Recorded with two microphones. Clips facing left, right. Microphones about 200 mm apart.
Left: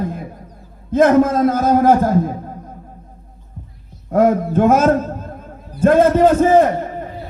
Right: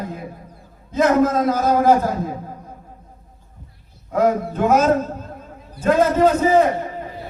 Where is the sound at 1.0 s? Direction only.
50° left (ahead or behind).